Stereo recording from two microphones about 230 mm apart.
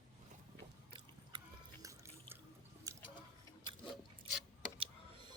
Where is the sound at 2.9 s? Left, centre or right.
Centre.